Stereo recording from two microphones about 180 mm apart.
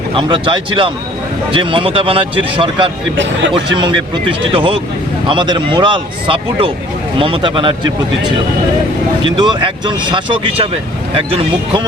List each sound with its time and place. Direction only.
0.2 s speech: 30° right (ahead or behind)
9.2 s speech: 25° right (ahead or behind)